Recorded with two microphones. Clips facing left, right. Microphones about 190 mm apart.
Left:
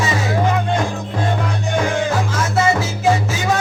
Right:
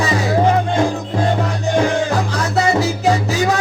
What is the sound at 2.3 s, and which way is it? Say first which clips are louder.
Music: right 1 dB; 35° right (ahead or behind).